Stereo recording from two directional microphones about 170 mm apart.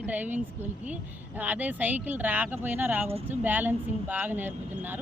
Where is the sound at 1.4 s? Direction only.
10° right (ahead or behind).